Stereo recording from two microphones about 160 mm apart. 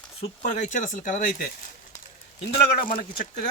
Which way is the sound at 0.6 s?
50° left (ahead or behind).